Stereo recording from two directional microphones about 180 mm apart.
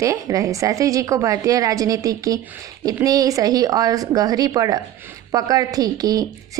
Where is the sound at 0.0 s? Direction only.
15° right (ahead or behind).